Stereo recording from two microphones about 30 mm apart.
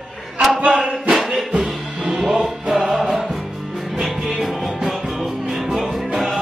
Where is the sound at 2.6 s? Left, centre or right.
Right.